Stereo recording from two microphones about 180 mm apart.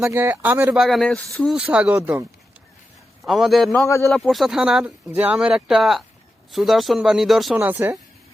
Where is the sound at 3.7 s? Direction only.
15° left (ahead or behind).